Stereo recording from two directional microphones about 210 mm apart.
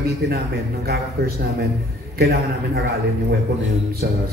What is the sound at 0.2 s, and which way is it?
A man's voice, 50° right (ahead or behind).